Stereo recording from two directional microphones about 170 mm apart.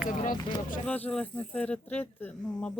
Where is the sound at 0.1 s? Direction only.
50° left (ahead or behind).